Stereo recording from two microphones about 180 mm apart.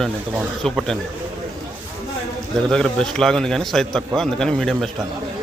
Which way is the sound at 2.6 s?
5° left (ahead or behind).